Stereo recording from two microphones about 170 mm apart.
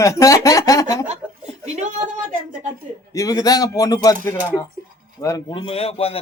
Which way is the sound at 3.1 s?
20° left (ahead or behind).